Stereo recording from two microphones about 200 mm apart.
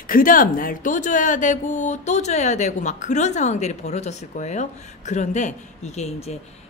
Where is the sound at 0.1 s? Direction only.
45° left (ahead or behind).